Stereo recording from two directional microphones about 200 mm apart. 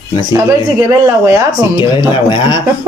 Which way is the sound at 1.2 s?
15° right (ahead or behind).